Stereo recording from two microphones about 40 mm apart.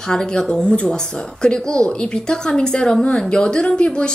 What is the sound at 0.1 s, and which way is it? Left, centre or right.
A woman's voice, centre.